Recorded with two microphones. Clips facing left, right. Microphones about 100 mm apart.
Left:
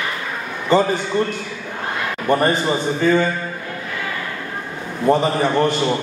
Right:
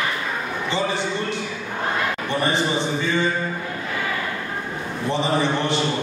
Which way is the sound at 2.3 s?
45° left (ahead or behind).